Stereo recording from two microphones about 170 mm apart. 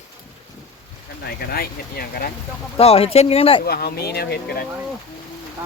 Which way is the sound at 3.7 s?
65° left (ahead or behind).